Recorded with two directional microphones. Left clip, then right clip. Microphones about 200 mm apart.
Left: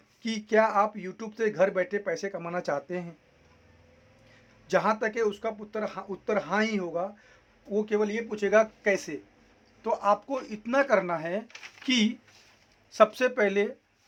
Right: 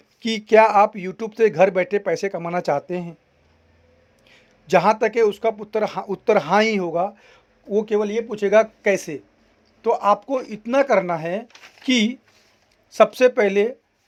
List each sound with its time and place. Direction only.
0.2 s speech: 35° right (ahead or behind)
4.6 s speech: 35° right (ahead or behind)